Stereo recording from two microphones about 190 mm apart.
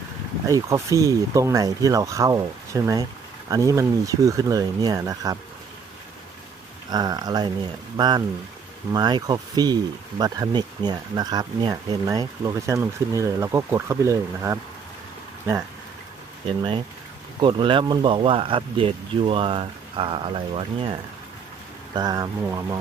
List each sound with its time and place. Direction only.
0.4 s speech: 15° right (ahead or behind)
6.9 s speech: 20° right (ahead or behind)
17.4 s speech: 25° right (ahead or behind)
21.9 s speech: 20° right (ahead or behind)